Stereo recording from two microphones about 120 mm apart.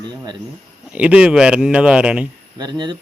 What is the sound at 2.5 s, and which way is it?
Speech, 40° right (ahead or behind).